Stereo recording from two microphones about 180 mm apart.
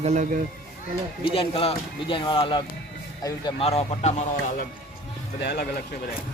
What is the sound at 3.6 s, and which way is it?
Speech, 35° left (ahead or behind).